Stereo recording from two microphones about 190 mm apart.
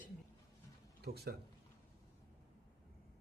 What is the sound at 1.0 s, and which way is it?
Speech, 55° right (ahead or behind).